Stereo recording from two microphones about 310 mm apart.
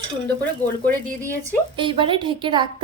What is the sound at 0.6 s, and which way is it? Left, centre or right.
Speech, left.